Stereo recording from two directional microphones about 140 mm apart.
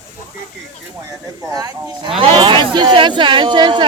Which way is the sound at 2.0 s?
40° right (ahead or behind).